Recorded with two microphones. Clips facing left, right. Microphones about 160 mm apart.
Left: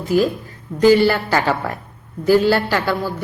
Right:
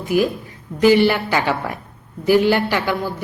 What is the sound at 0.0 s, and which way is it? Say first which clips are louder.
A woman's voice: left 1 dB; 15° right (ahead or behind).